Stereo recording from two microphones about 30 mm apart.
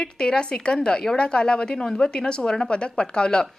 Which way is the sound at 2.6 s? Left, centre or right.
Left.